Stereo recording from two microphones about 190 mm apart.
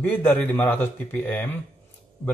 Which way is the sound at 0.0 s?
10° left (ahead or behind).